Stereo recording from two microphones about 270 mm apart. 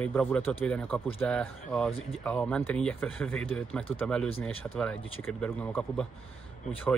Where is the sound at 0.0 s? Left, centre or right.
Centre.